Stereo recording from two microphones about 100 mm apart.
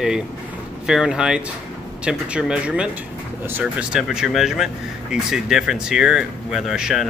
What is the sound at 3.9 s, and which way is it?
Speech, 5° right (ahead or behind).